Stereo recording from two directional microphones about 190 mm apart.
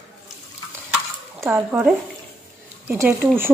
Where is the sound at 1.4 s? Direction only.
10° right (ahead or behind).